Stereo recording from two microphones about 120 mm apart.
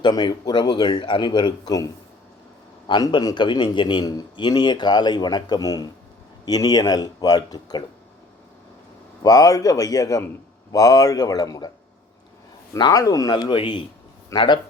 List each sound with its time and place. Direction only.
0.0 s a man's voice: 35° left (ahead or behind)
9.2 s a man's voice: 30° left (ahead or behind)
12.7 s a man's voice: 30° left (ahead or behind)